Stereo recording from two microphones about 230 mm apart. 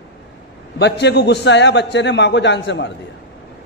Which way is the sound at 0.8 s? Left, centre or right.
Left.